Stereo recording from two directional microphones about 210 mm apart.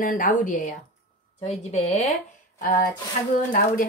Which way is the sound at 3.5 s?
40° left (ahead or behind).